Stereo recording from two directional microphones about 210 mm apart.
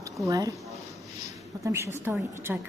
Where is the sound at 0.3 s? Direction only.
15° right (ahead or behind).